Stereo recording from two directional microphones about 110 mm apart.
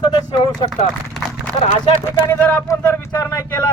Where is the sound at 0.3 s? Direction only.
40° left (ahead or behind).